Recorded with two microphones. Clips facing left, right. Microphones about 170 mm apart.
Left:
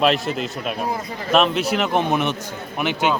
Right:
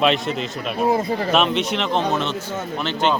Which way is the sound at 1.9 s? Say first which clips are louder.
Left 1 dB; 15° left (ahead or behind).